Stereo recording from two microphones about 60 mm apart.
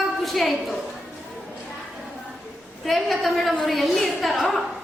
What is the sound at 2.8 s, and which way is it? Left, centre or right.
A woman's voice, centre.